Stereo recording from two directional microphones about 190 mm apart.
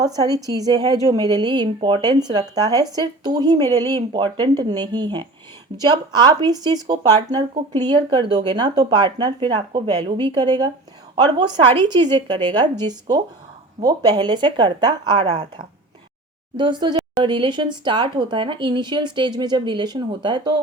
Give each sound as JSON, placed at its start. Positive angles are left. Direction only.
{"t": 0.0, "sound": "speech", "side_deg": -20}